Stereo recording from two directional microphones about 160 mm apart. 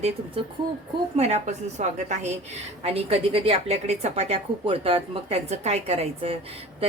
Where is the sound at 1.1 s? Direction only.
40° right (ahead or behind).